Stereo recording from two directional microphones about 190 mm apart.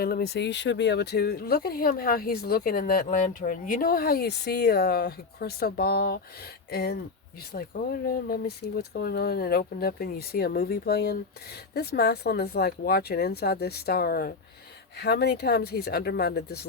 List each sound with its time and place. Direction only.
0.0 s speech: 55° left (ahead or behind)